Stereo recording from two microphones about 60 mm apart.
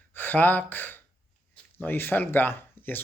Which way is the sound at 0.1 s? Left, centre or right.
Left.